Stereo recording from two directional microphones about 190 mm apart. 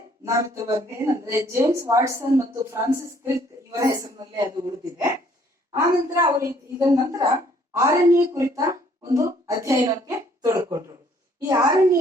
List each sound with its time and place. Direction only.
0.3 s a woman's voice: 15° right (ahead or behind)